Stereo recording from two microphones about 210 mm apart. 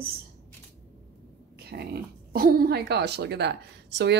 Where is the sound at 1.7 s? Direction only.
50° right (ahead or behind).